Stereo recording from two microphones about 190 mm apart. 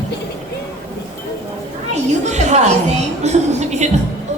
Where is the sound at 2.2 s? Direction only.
35° right (ahead or behind).